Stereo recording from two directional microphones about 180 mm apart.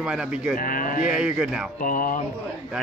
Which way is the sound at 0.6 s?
50° left (ahead or behind).